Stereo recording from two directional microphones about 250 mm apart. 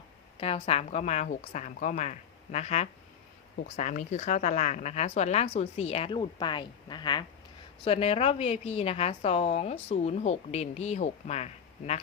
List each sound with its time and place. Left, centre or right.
0.3 s a woman's voice: left